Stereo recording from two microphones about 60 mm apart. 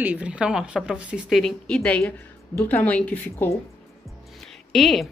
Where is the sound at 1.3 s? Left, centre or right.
Centre.